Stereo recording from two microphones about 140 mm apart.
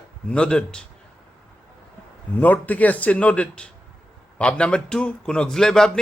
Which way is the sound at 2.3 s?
10° left (ahead or behind).